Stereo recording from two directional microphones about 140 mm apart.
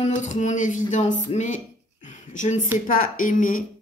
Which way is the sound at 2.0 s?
60° left (ahead or behind).